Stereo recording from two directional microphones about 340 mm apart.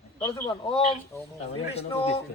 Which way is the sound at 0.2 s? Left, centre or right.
Centre.